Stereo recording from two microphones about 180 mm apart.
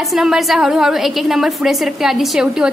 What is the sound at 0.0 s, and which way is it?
A woman's voice, centre (ahead or behind).